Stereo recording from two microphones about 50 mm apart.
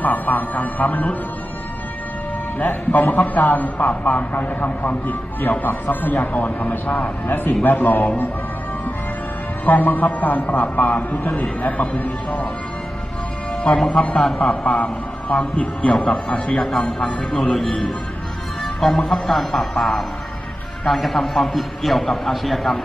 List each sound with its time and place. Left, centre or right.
0.0 s a man's voice: left
2.6 s a man's voice: left
9.7 s a man's voice: left
13.8 s a man's voice: left
20.8 s a man's voice: centre